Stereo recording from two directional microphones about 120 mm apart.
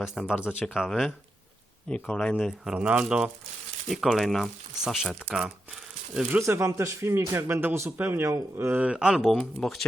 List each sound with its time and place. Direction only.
0.0 s speech: 5° right (ahead or behind)
2.3 s speech: 5° right (ahead or behind)
6.4 s a man's voice: 25° right (ahead or behind); by 9.8 s 5° left (ahead or behind)